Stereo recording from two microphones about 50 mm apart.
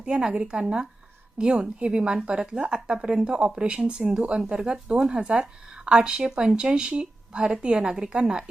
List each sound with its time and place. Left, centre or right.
0.0 s a woman's voice: centre